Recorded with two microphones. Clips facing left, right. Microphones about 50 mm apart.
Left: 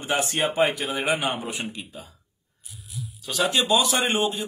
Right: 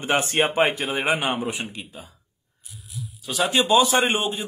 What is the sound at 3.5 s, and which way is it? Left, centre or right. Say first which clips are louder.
Speech: right 4 dB; right.